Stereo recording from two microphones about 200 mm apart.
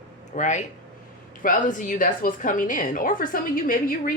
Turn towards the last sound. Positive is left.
turn(degrees=45)  # may be behind; listen again after turning